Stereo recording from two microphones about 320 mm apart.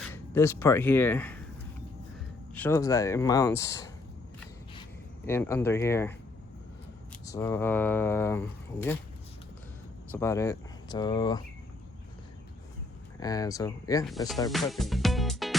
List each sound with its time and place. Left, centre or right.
0.1 s speech: centre
2.6 s speech: centre
5.2 s speech: centre
7.3 s speech: centre
10.1 s speech: centre
13.1 s speech: centre
14.5 s music: centre